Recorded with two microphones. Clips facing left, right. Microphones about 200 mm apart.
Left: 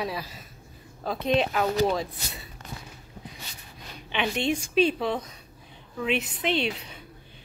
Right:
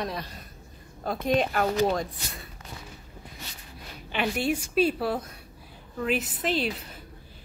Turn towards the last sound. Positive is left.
turn(degrees=0)  # may be behind; listen again after turning